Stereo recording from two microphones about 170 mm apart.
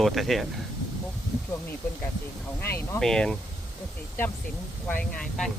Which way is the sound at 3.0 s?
5° left (ahead or behind).